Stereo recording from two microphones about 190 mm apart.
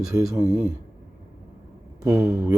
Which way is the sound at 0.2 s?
Centre (ahead or behind).